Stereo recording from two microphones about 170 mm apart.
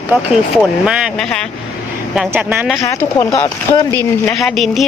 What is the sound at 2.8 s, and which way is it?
Speech, 20° left (ahead or behind).